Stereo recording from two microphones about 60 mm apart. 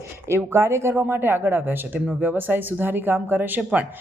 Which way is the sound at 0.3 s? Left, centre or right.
Right.